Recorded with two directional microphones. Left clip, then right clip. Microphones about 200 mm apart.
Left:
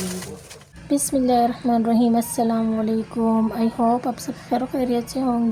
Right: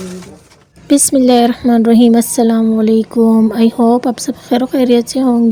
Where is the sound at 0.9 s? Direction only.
45° right (ahead or behind).